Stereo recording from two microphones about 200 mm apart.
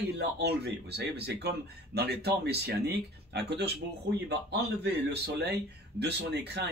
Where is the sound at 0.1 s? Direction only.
55° right (ahead or behind).